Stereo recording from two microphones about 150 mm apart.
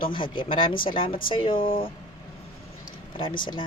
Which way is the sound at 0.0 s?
35° left (ahead or behind).